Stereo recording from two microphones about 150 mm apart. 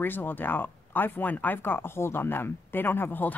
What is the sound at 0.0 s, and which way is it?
Speech, 15° left (ahead or behind).